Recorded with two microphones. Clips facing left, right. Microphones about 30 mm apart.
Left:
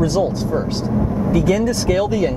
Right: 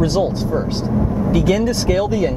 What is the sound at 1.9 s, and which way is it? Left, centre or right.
Speech, centre.